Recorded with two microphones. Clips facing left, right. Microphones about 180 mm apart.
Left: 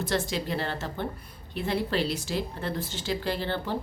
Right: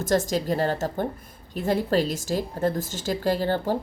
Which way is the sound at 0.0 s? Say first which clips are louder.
Right 5 dB; 45° right (ahead or behind).